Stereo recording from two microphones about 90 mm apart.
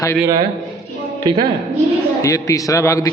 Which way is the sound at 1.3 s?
55° right (ahead or behind).